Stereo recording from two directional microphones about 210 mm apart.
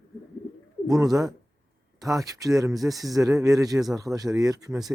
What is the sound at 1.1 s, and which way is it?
A man's voice, 15° right (ahead or behind).